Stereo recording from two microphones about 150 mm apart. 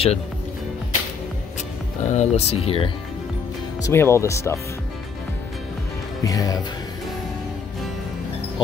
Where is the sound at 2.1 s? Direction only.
45° left (ahead or behind).